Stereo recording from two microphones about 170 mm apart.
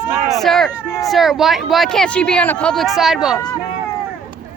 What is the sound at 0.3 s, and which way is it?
Speech, centre (ahead or behind).